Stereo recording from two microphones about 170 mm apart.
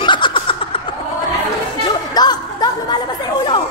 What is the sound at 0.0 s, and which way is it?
Snicker, 30° left (ahead or behind).